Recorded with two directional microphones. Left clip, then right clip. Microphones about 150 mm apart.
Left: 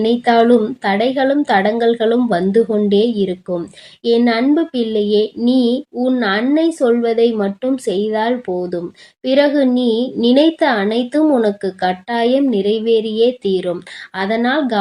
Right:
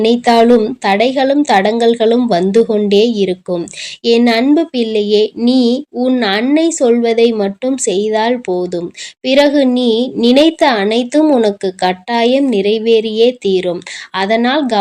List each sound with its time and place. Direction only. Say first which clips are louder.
0.0 s a woman's voice: right 3 dB; 25° right (ahead or behind)